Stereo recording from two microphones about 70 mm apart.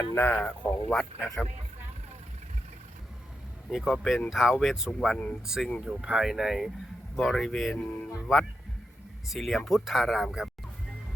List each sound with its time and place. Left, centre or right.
0.0 s speech: left
0.3 s a man's voice: centre
3.7 s speech: centre
4.9 s a man's voice: centre
5.8 s speech: centre
7.4 s a man's voice: centre
7.8 s speech: centre
9.3 s speech: centre